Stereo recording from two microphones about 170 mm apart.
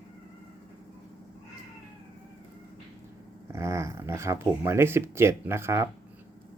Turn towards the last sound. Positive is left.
turn(degrees=-15)  # may be behind; listen again after turning